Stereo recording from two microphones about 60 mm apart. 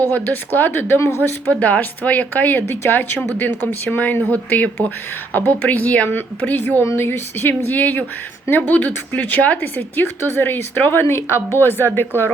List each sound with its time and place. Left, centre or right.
0.1 s a woman's voice: left
1.5 s a woman's voice: left
11.0 s a woman's voice: left